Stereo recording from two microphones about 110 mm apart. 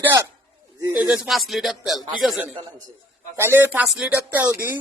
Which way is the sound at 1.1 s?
Centre (ahead or behind).